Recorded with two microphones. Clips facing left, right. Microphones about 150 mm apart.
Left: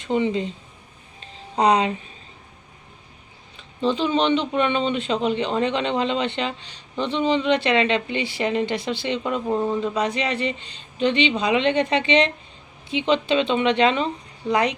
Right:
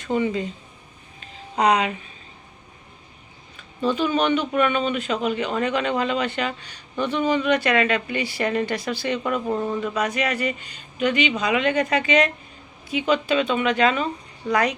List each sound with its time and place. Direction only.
0.0 s speech: 20° left (ahead or behind)
1.2 s a sound: 30° left (ahead or behind)
3.8 s speech: 20° left (ahead or behind)